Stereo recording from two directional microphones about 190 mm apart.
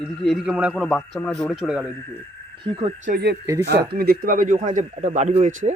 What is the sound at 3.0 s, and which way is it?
A man's voice, 55° right (ahead or behind).